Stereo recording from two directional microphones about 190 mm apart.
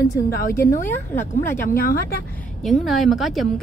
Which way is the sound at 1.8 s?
50° left (ahead or behind).